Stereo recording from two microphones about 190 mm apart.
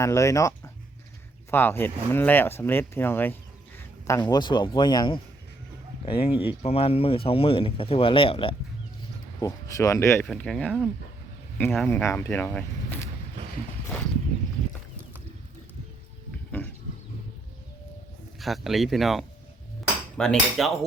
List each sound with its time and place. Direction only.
0.0 s speech: 15° left (ahead or behind)
6.3 s speech: 10° right (ahead or behind)
6.6 s speech: 30° left (ahead or behind)
9.4 s speech: 15° left (ahead or behind)
10.2 s speech: 5° left (ahead or behind)
18.3 s speech: centre (ahead or behind)